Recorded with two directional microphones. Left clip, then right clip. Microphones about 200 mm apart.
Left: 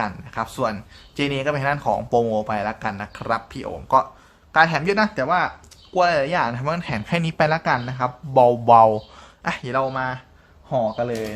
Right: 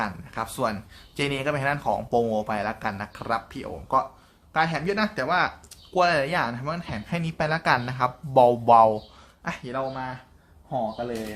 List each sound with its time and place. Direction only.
0.0 s speech: 10° left (ahead or behind)
9.4 s speech: 20° left (ahead or behind)
10.7 s speech: 45° left (ahead or behind)